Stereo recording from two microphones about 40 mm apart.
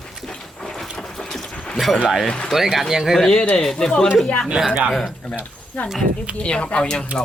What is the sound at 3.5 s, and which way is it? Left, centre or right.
Speech, centre.